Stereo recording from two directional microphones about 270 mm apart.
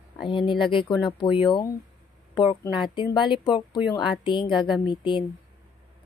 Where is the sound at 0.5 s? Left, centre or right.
Centre.